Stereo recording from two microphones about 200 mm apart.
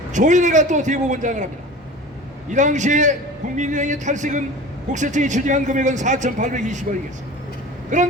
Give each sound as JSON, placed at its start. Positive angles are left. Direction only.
{"t": 0.1, "sound": "a man's voice", "side_deg": -35}
{"t": 2.5, "sound": "a man's voice", "side_deg": -40}
{"t": 7.9, "sound": "a man's voice", "side_deg": -40}